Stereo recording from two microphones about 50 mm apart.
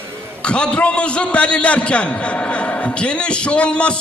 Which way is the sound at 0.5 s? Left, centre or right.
Left.